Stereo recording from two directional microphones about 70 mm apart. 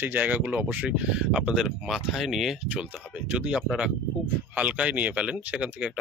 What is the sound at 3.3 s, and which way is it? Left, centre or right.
Speech, centre.